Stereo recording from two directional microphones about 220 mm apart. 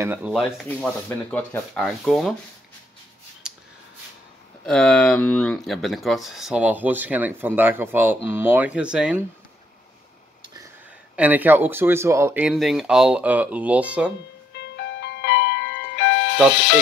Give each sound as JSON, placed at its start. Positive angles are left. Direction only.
{"t": 0.0, "sound": "speech", "side_deg": -5}
{"t": 3.4, "sound": "a sound", "side_deg": -5}
{"t": 4.6, "sound": "speech", "side_deg": 5}
{"t": 11.1, "sound": "speech", "side_deg": -5}
{"t": 14.5, "sound": "music", "side_deg": 50}